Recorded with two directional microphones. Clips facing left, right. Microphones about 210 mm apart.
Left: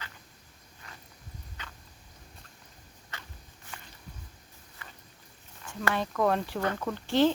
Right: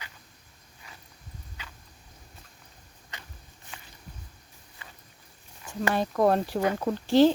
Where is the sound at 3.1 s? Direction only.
15° right (ahead or behind).